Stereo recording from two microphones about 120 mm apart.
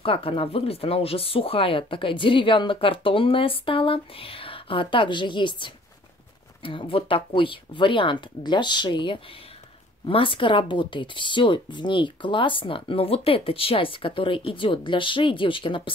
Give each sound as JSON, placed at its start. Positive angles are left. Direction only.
{"t": 0.0, "sound": "speech", "side_deg": 50}